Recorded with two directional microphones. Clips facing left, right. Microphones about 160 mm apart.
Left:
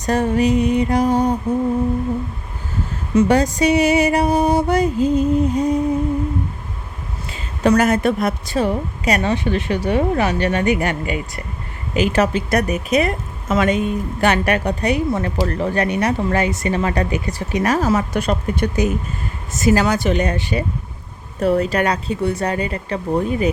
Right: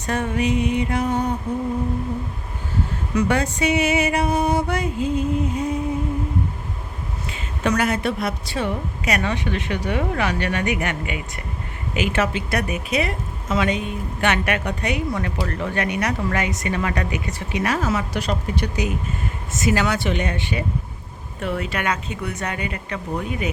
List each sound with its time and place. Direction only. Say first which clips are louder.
0.0 s speech: left 6 dB; 35° left (ahead or behind)
3.2 s speech: left 6 dB; 35° left (ahead or behind)
7.3 s speech: left 7 dB; 35° left (ahead or behind)
19.5 s speech: left 5 dB; 35° left (ahead or behind)